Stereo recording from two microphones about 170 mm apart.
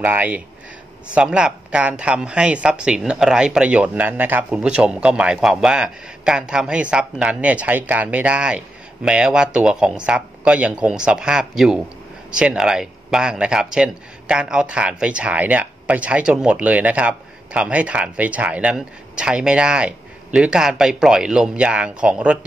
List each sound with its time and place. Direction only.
0.0 s speech: 10° right (ahead or behind)